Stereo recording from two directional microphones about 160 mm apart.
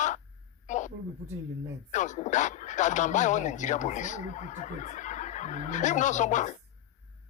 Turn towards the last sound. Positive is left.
turn(degrees=50)  # may be behind; listen again after turning